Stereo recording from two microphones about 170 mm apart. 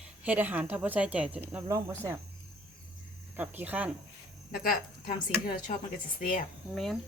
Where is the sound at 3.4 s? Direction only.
10° right (ahead or behind).